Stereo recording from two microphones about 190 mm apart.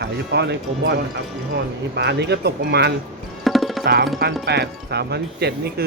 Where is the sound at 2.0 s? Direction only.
65° right (ahead or behind).